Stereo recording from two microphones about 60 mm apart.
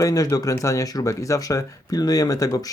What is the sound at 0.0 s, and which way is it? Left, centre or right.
Speech, left.